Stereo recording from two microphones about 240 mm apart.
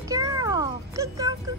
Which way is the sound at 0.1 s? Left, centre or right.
Centre.